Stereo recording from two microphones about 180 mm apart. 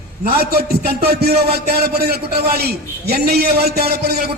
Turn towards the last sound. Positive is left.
turn(degrees=-60)  # may be behind; listen again after turning